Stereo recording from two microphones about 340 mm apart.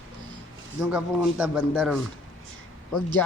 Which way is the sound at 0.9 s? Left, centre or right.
Centre.